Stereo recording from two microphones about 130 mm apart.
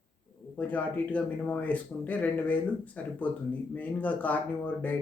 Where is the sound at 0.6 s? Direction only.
10° left (ahead or behind).